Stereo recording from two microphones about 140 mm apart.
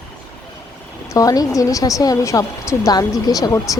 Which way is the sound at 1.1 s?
25° left (ahead or behind).